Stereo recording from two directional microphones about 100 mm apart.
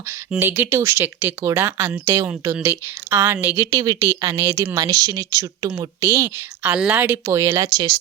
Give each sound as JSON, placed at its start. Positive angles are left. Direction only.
{"t": 0.3, "sound": "speech", "side_deg": -20}
{"t": 6.0, "sound": "speech", "side_deg": -30}
{"t": 7.3, "sound": "speech", "side_deg": -30}